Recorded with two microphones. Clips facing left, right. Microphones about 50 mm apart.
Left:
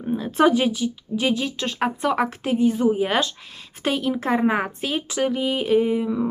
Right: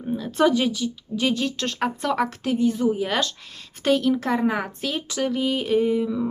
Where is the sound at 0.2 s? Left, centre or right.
Left.